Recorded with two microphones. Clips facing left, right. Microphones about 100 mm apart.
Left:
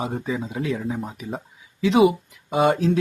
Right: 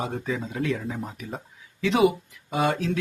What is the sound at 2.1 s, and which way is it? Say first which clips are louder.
Speech: left 4 dB; 25° left (ahead or behind).